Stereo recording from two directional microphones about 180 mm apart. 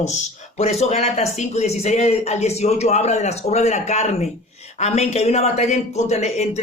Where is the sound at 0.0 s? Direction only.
40° left (ahead or behind).